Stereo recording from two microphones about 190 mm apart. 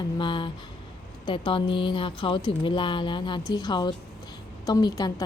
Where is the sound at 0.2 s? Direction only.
25° left (ahead or behind).